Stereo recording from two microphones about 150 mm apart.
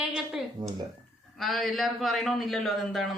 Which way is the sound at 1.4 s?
Centre (ahead or behind).